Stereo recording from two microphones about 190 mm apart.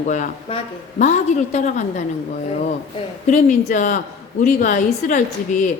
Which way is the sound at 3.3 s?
40° left (ahead or behind).